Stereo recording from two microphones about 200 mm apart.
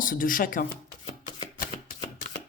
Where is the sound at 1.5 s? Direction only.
45° left (ahead or behind).